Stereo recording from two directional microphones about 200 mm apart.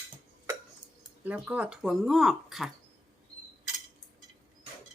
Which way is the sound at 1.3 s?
5° right (ahead or behind).